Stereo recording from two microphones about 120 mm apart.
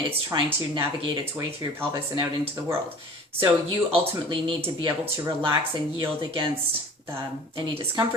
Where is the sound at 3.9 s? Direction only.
45° right (ahead or behind).